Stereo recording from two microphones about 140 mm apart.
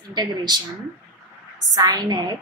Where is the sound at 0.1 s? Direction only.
30° right (ahead or behind).